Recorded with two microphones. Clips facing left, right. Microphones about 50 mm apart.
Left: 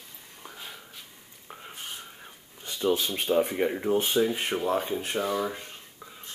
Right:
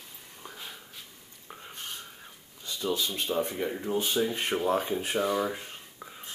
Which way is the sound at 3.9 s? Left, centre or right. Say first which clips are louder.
Left 2 dB; left.